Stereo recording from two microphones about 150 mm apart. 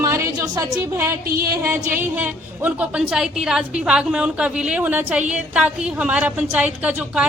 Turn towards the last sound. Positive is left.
turn(degrees=-10)  # may be behind; listen again after turning